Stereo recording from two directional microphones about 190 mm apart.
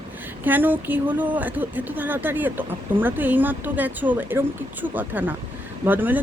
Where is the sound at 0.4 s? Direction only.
10° right (ahead or behind).